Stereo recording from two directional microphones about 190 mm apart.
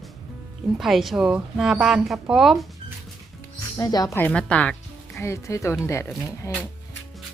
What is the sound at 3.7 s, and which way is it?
Speech, 20° left (ahead or behind).